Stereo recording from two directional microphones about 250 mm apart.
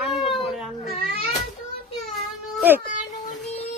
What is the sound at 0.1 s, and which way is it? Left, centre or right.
Baby cry, centre.